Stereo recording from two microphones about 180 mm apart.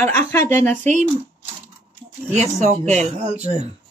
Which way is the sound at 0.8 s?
40° right (ahead or behind).